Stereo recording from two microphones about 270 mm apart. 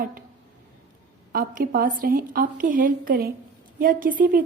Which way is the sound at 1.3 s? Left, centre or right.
Right.